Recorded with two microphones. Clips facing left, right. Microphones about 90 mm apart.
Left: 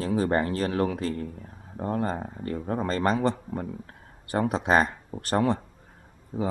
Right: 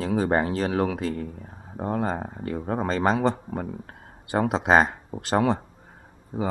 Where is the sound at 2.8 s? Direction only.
90° right.